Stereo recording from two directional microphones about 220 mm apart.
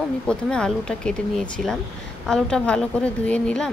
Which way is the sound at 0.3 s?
5° left (ahead or behind).